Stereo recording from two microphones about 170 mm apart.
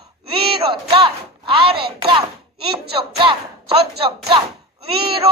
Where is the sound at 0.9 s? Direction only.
30° right (ahead or behind).